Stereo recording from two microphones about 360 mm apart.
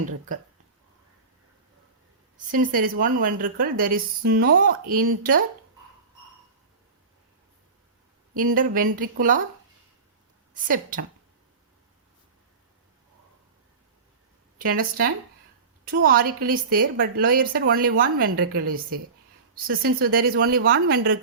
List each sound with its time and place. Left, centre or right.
2.5 s a woman's voice: right
8.4 s a woman's voice: right
10.5 s a woman's voice: right
14.6 s a woman's voice: right